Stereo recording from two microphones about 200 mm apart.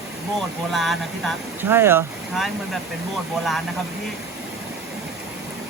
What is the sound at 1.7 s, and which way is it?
Speech, 10° right (ahead or behind).